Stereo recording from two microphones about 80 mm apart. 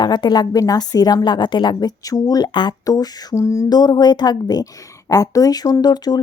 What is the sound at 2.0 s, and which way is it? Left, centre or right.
Speech, left.